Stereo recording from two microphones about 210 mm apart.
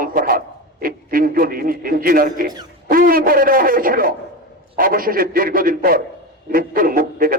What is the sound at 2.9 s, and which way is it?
Speech, 45° right (ahead or behind).